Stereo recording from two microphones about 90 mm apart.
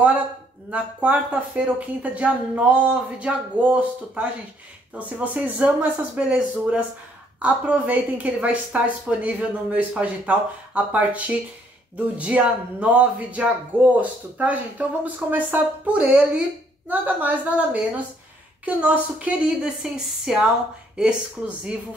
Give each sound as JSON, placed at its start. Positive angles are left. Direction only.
{"t": 0.7, "sound": "a woman's voice", "side_deg": -15}
{"t": 12.4, "sound": "a woman's voice", "side_deg": -10}